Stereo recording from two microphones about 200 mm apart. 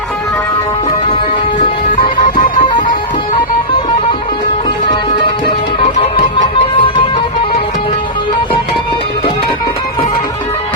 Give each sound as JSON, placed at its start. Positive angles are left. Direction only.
{"t": 2.4, "sound": "music", "side_deg": 40}
{"t": 6.3, "sound": "music", "side_deg": 25}